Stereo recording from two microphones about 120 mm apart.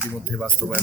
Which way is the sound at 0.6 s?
10° right (ahead or behind).